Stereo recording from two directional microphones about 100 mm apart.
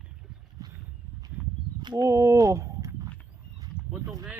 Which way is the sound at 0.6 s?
35° right (ahead or behind).